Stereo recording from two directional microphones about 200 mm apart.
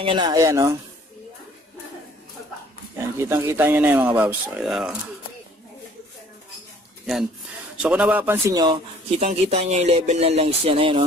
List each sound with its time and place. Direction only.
0.0 s speech: 25° right (ahead or behind)
3.2 s speech: 15° right (ahead or behind)
7.8 s speech: 5° right (ahead or behind)
9.2 s speech: 30° right (ahead or behind)